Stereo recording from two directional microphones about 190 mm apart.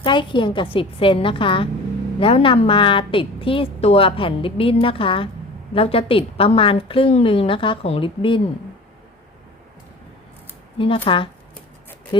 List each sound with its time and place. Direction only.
0.0 s a woman's voice: 25° left (ahead or behind)
10.8 s a woman's voice: 30° left (ahead or behind)